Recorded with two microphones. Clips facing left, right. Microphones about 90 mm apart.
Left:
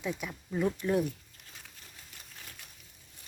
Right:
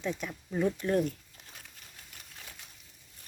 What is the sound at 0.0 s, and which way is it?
A woman's voice, 5° left (ahead or behind).